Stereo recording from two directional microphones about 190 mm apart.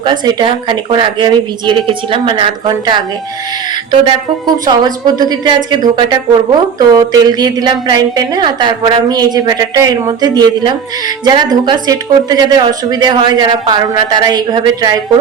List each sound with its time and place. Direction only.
0.0 s a woman's voice: 20° right (ahead or behind)
4.0 s a woman's voice: 20° right (ahead or behind)